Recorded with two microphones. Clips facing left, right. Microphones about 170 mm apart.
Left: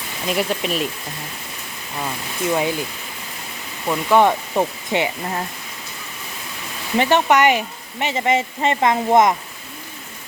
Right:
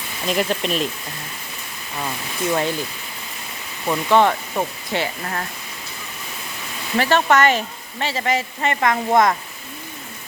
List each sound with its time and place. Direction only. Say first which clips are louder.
0.3 s speech: even; 5° left (ahead or behind)
2.5 s speech: left 1 dB; 10° left (ahead or behind)
3.8 s speech: left 1 dB; 10° left (ahead or behind)
6.9 s speech: left 1 dB; 15° left (ahead or behind)